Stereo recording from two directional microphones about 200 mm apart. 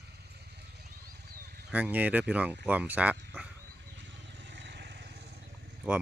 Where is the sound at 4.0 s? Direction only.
60° right (ahead or behind).